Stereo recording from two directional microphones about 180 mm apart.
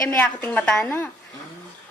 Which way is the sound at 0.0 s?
15° left (ahead or behind).